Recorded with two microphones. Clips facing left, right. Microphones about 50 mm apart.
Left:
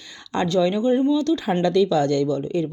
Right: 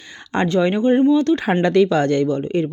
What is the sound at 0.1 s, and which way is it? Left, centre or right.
Speech, right.